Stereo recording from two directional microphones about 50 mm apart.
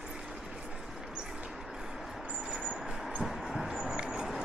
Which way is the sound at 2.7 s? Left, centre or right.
Centre.